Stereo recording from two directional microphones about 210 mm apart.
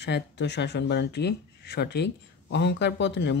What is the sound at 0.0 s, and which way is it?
Speech, 55° left (ahead or behind).